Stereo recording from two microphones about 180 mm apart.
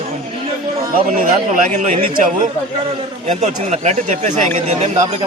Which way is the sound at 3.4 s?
40° right (ahead or behind).